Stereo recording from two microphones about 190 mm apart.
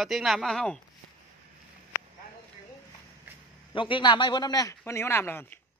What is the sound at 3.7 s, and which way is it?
A man's voice, 25° left (ahead or behind).